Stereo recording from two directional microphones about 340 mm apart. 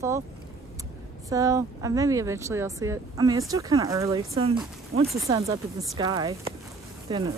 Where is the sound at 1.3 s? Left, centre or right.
Centre.